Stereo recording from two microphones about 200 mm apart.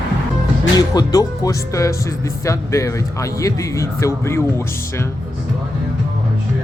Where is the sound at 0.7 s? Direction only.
20° left (ahead or behind).